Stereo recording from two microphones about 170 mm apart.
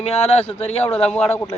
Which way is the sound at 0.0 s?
35° left (ahead or behind).